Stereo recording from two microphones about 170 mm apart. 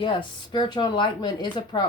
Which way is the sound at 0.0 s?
30° left (ahead or behind).